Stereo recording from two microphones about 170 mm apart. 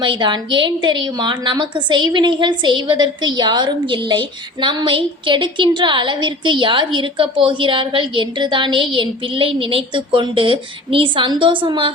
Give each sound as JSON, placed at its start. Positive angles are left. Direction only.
{"t": 0.0, "sound": "a woman's voice", "side_deg": -25}